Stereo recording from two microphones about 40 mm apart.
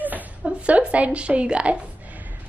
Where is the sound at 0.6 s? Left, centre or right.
Right.